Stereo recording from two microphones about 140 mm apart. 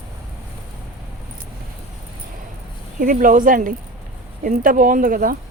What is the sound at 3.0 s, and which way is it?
Speech, 75° right (ahead or behind).